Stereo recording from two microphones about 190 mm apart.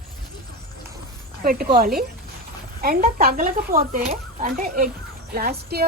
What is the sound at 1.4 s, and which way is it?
Speech, 50° right (ahead or behind).